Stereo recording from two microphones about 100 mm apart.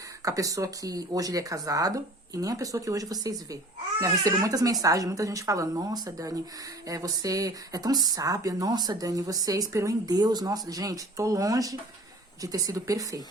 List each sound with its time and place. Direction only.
0.3 s speech: 35° right (ahead or behind)